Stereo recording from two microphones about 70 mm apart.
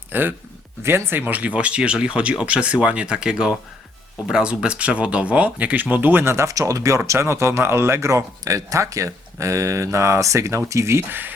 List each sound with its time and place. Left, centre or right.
0.1 s speech: right